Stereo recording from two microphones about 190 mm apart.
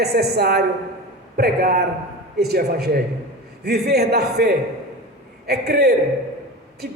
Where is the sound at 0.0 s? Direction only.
60° right (ahead or behind).